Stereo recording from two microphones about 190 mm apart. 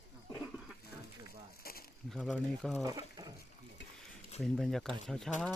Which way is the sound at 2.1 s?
Centre (ahead or behind).